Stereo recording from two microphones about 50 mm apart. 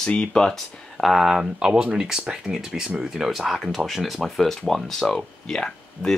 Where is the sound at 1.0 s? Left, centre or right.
Centre.